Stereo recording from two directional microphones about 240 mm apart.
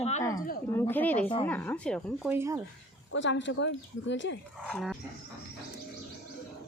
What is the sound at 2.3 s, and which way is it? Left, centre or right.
Speech, centre.